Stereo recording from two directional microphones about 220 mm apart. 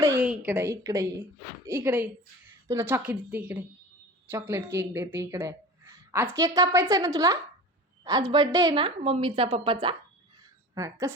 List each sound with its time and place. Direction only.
0.0 s a woman's voice: 10° right (ahead or behind)